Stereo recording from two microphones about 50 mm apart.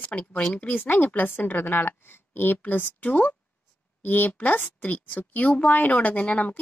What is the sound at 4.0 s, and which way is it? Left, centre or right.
Speech, left.